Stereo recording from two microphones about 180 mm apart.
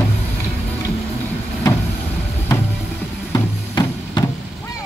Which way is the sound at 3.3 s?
20° left (ahead or behind).